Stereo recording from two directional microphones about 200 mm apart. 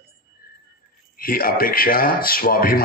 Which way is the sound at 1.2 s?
45° left (ahead or behind).